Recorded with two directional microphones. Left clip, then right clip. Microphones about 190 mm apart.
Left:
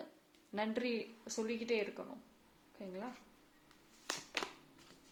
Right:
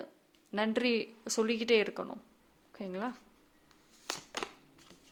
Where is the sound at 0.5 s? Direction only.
35° right (ahead or behind).